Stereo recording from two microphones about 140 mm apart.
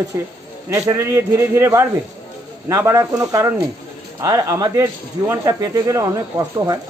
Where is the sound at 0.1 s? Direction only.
25° right (ahead or behind).